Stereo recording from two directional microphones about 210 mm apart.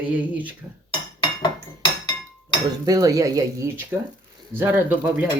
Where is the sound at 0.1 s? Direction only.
5° right (ahead or behind).